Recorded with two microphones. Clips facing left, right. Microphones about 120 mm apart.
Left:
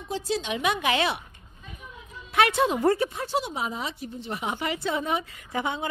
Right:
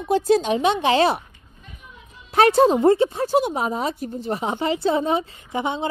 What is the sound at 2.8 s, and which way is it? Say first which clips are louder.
Speech: right 7 dB; 25° right (ahead or behind).